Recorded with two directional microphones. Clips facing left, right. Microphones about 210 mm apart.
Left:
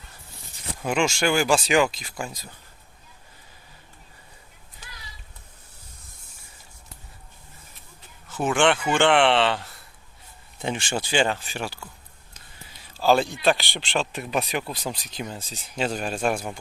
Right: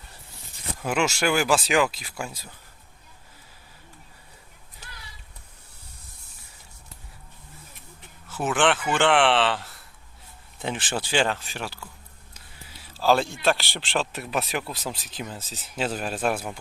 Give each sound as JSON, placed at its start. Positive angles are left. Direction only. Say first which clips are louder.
{"t": 0.8, "sound": "a man's voice", "louder": "left 1 dB", "side_deg": -5}
{"t": 8.3, "sound": "a man's voice", "louder": "left 2 dB", "side_deg": -5}